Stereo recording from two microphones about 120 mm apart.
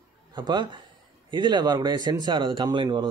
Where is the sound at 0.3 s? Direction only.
35° right (ahead or behind).